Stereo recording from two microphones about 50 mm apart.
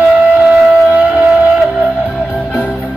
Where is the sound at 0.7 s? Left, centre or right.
Right.